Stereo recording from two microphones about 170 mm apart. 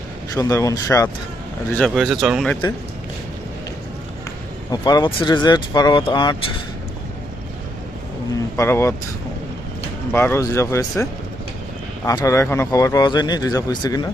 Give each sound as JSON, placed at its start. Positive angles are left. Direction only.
{"t": 0.3, "sound": "speech", "side_deg": 20}
{"t": 1.7, "sound": "speech", "side_deg": 0}
{"t": 4.7, "sound": "speech", "side_deg": 25}
{"t": 8.5, "sound": "speech", "side_deg": 15}
{"t": 10.1, "sound": "speech", "side_deg": 15}